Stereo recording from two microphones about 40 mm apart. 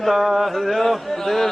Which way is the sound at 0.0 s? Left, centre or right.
Centre.